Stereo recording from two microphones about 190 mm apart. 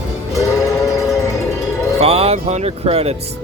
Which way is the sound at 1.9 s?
30° right (ahead or behind).